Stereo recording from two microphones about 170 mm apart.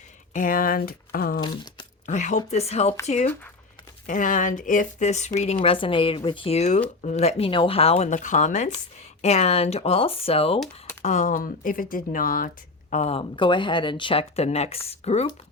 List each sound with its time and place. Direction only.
0.3 s speech: 55° left (ahead or behind)
1.4 s speech: 25° left (ahead or behind)
2.0 s speech: 45° left (ahead or behind)
4.0 s speech: 50° left (ahead or behind)
11.0 s speech: 45° left (ahead or behind)
12.9 s speech: 40° left (ahead or behind)